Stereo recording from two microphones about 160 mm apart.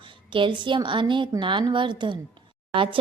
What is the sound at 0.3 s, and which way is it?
Speech, 30° right (ahead or behind).